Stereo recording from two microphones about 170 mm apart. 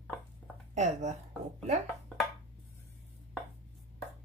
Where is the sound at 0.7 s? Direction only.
45° right (ahead or behind).